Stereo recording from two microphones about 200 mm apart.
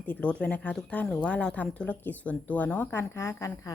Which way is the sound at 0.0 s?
10° left (ahead or behind).